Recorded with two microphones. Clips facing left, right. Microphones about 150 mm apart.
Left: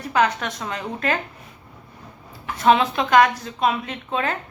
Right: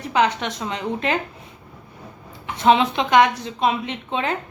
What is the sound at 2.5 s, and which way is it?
A woman's voice, 20° right (ahead or behind).